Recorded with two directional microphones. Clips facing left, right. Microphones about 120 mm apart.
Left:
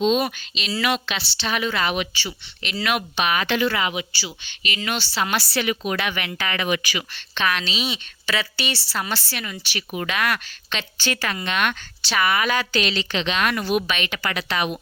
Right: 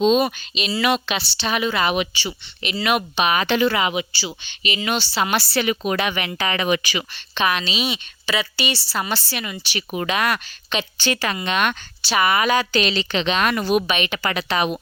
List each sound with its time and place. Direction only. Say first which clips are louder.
0.0 s a woman's voice: right 3 dB; 25° right (ahead or behind)
5.5 s a woman's voice: right 3 dB; 35° right (ahead or behind)
7.3 s a woman's voice: right 2 dB; 15° right (ahead or behind)
8.9 s a woman's voice: right 2 dB; 20° right (ahead or behind)
14.3 s a woman's voice: right 3 dB; 30° right (ahead or behind)